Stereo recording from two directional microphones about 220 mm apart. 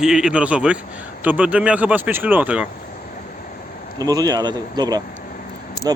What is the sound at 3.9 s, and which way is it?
Speech, 15° right (ahead or behind).